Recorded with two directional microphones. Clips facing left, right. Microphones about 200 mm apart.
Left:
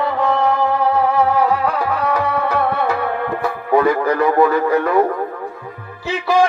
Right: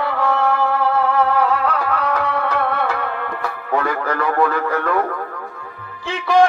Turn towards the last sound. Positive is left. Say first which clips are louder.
# right 1 dB
turn(degrees=5)  # may be behind; listen again after turning